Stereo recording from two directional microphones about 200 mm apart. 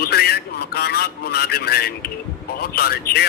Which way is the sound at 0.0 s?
50° left (ahead or behind).